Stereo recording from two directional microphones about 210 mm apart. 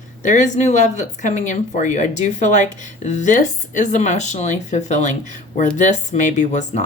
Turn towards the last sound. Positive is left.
turn(degrees=35)  # may be behind; listen again after turning